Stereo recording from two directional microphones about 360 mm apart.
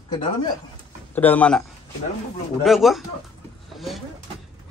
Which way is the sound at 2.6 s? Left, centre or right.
Centre.